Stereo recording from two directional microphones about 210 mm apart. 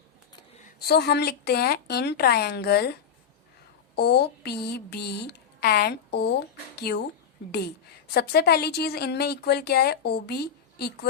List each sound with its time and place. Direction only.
0.6 s speech: 50° left (ahead or behind)
8.1 s speech: 50° left (ahead or behind)